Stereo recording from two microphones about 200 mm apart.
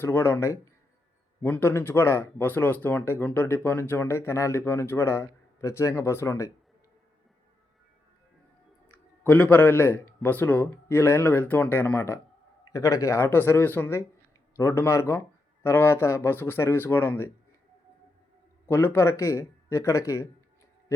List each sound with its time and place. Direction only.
0.0 s speech: 10° left (ahead or behind)
9.2 s speech: 10° left (ahead or behind)
18.7 s speech: 10° left (ahead or behind)